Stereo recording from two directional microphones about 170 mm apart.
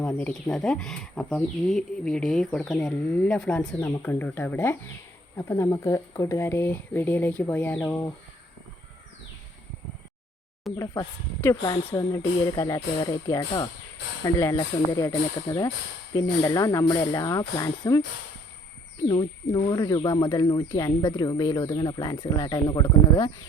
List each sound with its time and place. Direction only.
0.0 s speech: 10° left (ahead or behind)
10.7 s speech: centre (ahead or behind)
11.6 s speech: 25° left (ahead or behind)
19.0 s speech: 25° left (ahead or behind)